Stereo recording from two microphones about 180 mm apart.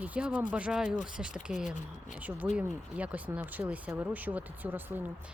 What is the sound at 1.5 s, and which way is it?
Speech, 45° left (ahead or behind).